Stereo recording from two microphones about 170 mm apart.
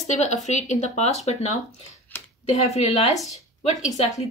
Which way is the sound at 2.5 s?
40° left (ahead or behind).